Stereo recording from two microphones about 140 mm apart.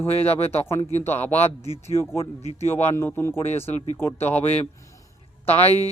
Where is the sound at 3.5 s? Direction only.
50° left (ahead or behind).